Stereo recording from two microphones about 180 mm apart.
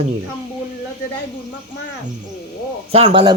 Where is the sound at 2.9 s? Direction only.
30° right (ahead or behind).